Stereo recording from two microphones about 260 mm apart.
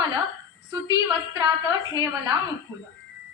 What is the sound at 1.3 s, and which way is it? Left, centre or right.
A woman's voice, centre.